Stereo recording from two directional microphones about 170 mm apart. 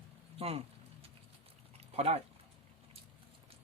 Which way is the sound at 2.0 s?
40° right (ahead or behind).